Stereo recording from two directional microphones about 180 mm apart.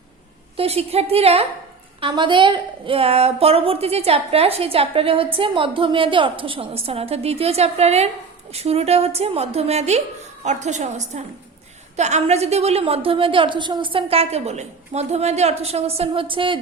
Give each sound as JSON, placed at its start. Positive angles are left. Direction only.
{"t": 0.5, "sound": "a woman's voice", "side_deg": -35}